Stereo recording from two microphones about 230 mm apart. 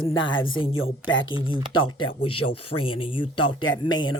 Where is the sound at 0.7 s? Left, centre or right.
Left.